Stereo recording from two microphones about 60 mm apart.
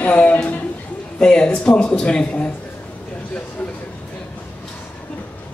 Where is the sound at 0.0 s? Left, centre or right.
Left.